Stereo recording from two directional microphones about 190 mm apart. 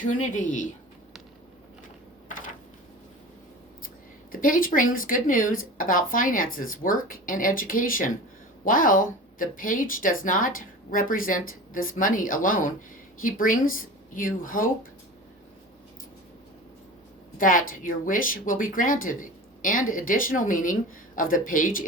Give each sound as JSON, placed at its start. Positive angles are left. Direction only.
{"t": 0.1, "sound": "speech", "side_deg": 40}
{"t": 4.3, "sound": "speech", "side_deg": 45}
{"t": 17.3, "sound": "speech", "side_deg": 45}